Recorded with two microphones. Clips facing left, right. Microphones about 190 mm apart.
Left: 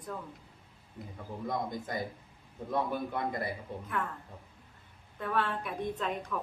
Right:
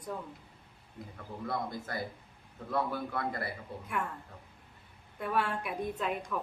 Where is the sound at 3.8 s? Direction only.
10° right (ahead or behind).